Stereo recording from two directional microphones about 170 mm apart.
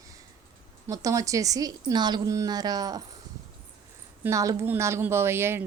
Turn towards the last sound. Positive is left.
turn(degrees=-15)  # may be behind; listen again after turning